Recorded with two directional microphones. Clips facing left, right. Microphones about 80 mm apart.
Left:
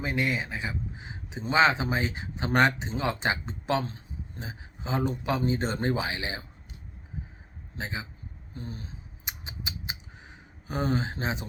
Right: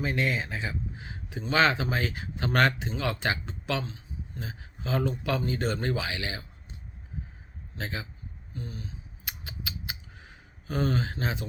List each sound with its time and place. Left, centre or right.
0.0 s speech: centre
7.8 s speech: centre
8.5 s a sound: left